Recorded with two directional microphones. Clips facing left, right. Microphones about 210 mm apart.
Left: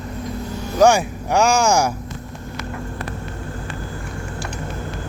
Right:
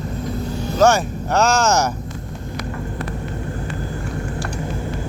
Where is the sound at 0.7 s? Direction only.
15° left (ahead or behind).